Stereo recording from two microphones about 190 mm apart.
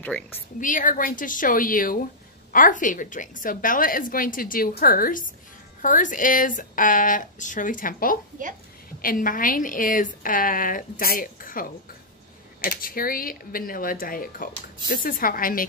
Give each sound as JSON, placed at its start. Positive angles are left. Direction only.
{"t": 0.0, "sound": "a woman's voice", "side_deg": 5}
{"t": 0.6, "sound": "a woman's voice", "side_deg": 45}
{"t": 12.6, "sound": "a woman's voice", "side_deg": 50}